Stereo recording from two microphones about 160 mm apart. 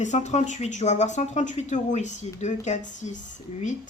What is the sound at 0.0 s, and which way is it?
Speech, 50° left (ahead or behind).